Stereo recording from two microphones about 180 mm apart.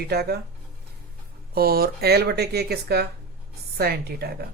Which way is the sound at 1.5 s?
55° right (ahead or behind).